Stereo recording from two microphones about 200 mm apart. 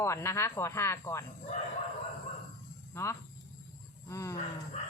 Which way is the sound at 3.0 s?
10° left (ahead or behind).